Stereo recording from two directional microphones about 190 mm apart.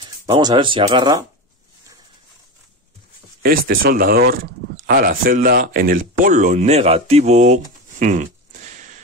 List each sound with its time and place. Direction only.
0.3 s speech: 25° right (ahead or behind)
3.4 s speech: 50° right (ahead or behind)